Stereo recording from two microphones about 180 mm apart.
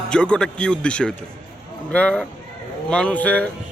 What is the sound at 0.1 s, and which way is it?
A man's voice, 5° left (ahead or behind).